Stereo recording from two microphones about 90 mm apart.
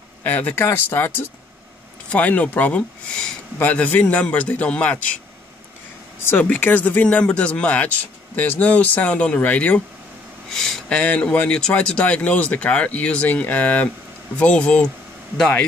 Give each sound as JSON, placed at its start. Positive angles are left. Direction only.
{"t": 0.2, "sound": "speech", "side_deg": 20}
{"t": 6.4, "sound": "speech", "side_deg": 20}
{"t": 10.5, "sound": "speech", "side_deg": 5}